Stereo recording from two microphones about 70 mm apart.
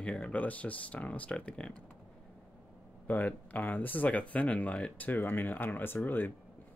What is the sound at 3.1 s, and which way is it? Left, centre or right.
Speech, left.